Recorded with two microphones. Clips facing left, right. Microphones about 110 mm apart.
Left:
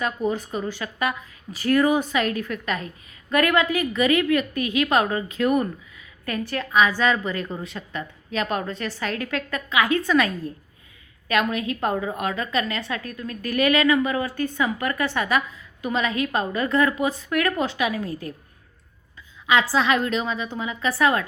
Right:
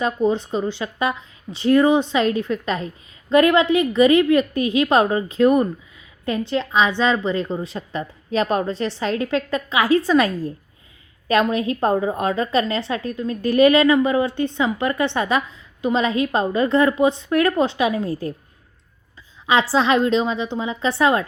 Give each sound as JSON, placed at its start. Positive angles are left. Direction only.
{"t": 0.0, "sound": "a woman's voice", "side_deg": -25}
{"t": 19.5, "sound": "a woman's voice", "side_deg": -30}